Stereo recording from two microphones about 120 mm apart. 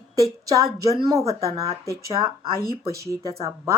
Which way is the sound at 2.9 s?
25° right (ahead or behind).